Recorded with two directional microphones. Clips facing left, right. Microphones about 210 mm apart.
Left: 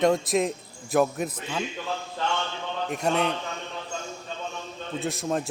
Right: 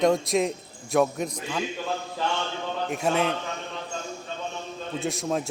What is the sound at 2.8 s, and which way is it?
Speech, centre (ahead or behind).